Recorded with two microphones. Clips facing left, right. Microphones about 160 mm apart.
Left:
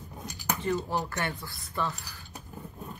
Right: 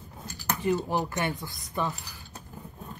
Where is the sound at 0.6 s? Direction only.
15° right (ahead or behind).